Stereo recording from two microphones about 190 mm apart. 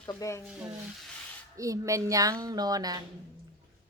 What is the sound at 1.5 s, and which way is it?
Speech, 15° right (ahead or behind).